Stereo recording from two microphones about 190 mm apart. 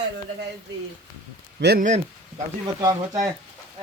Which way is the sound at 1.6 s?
55° right (ahead or behind).